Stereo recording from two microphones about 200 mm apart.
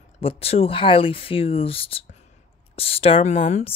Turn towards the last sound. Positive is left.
turn(degrees=35)  # may be behind; listen again after turning